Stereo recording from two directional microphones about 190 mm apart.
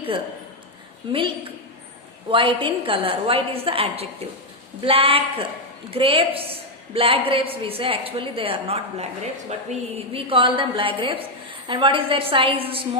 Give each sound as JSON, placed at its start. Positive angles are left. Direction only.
{"t": 1.0, "sound": "a woman's voice", "side_deg": -25}
{"t": 2.3, "sound": "a woman's voice", "side_deg": -25}